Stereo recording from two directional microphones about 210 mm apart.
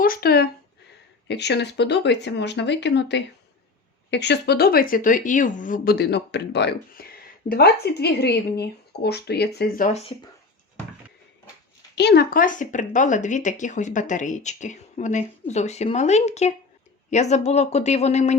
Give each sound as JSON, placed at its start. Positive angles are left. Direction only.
{"t": 0.0, "sound": "speech", "side_deg": 45}
{"t": 11.9, "sound": "speech", "side_deg": 50}